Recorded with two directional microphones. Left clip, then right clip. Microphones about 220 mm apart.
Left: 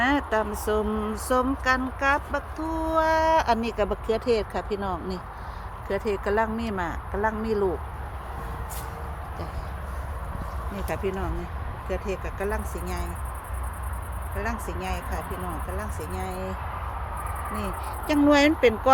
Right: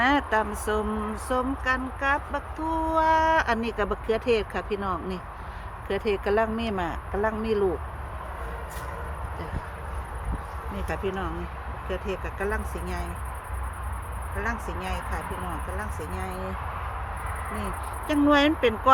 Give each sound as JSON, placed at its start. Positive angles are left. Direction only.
{"t": 0.0, "sound": "vehicle", "side_deg": 5}
{"t": 0.6, "sound": "speech", "side_deg": 5}
{"t": 1.3, "sound": "speech", "side_deg": 20}
{"t": 2.6, "sound": "speech", "side_deg": 0}
{"t": 10.8, "sound": "speech", "side_deg": -5}
{"t": 14.3, "sound": "speech", "side_deg": 5}
{"t": 17.6, "sound": "speech", "side_deg": 10}